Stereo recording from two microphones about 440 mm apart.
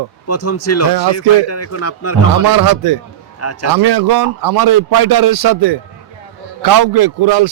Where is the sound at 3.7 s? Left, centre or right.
Right.